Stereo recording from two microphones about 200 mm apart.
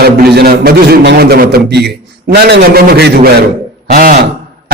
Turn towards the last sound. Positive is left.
turn(degrees=-45)  # may be behind; listen again after turning